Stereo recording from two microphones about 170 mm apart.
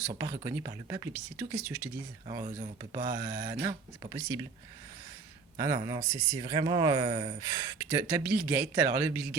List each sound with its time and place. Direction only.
0.7 s speech: 20° right (ahead or behind)
2.4 s speech: 50° right (ahead or behind)
2.9 s speech: 20° right (ahead or behind)
5.5 s speech: 20° right (ahead or behind)